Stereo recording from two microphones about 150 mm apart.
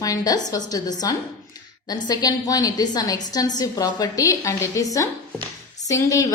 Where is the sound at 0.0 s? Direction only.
25° left (ahead or behind).